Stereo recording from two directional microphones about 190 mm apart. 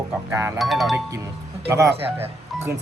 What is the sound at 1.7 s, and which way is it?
Speech, 15° right (ahead or behind).